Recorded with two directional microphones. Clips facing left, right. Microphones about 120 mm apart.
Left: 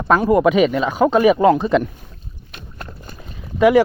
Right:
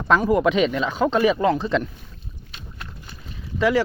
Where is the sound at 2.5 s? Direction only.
45° left (ahead or behind).